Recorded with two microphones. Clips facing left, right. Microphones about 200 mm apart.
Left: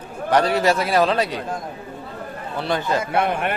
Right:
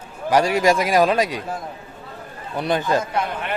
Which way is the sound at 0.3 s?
10° right (ahead or behind).